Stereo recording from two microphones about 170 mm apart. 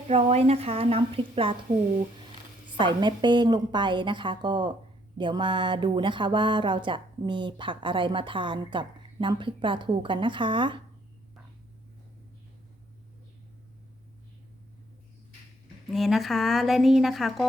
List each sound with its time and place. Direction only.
0.1 s a woman's voice: 35° right (ahead or behind)
2.7 s speech: 25° right (ahead or behind)
15.9 s speech: centre (ahead or behind)